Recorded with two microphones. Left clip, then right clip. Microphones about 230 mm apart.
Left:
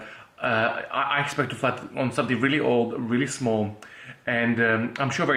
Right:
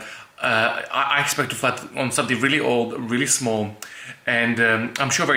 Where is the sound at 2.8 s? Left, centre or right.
Left.